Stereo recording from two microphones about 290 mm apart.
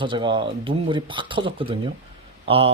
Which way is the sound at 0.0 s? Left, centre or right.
Centre.